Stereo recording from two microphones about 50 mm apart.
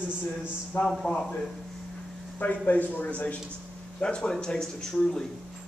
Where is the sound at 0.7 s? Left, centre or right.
Left.